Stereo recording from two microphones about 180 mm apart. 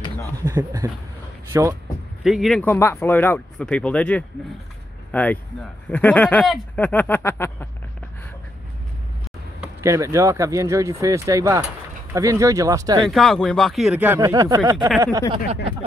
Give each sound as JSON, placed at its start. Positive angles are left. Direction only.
{"t": 0.5, "sound": "speech", "side_deg": -10}
{"t": 2.2, "sound": "speech", "side_deg": 0}
{"t": 2.6, "sound": "speech", "side_deg": 15}
{"t": 9.8, "sound": "speech", "side_deg": -15}
{"t": 13.0, "sound": "speech", "side_deg": 0}